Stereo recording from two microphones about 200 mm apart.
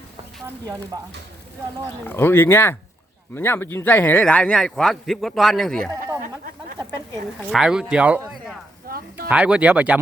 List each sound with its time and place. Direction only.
0.9 s speech: 20° right (ahead or behind)
2.0 s a man's voice: 10° left (ahead or behind)
7.5 s a man's voice: 5° right (ahead or behind)
8.9 s a sound: 50° right (ahead or behind)
9.3 s speech: 5° right (ahead or behind)